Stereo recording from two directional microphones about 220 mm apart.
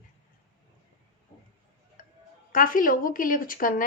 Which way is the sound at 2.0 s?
40° left (ahead or behind).